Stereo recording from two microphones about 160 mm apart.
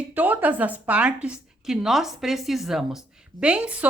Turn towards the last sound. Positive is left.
turn(degrees=-5)  # may be behind; listen again after turning